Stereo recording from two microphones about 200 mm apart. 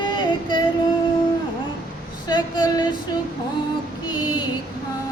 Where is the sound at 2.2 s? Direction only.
20° left (ahead or behind).